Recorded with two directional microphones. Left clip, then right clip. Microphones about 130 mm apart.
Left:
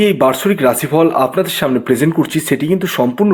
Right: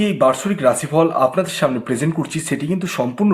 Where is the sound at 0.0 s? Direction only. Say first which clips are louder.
Left 4 dB; 40° left (ahead or behind).